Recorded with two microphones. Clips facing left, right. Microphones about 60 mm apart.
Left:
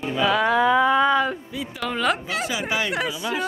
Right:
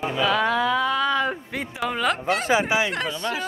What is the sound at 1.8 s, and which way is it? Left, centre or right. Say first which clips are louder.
Speech: left 1 dB; centre.